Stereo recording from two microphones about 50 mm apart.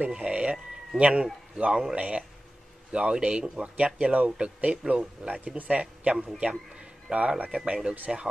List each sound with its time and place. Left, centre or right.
0.1 s speech: centre
6.1 s a man's voice: centre
6.8 s a sound: right
7.5 s speech: right
8.1 s a man's voice: centre